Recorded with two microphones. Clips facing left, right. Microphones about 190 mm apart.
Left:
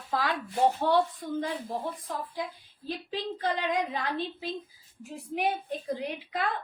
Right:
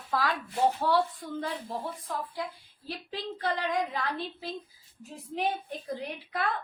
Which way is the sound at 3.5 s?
20° left (ahead or behind).